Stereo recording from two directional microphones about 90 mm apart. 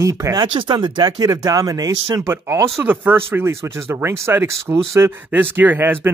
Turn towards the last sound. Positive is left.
turn(degrees=-25)  # may be behind; listen again after turning